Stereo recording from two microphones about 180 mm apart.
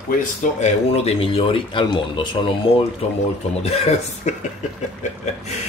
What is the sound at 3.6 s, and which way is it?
Speech, 35° left (ahead or behind).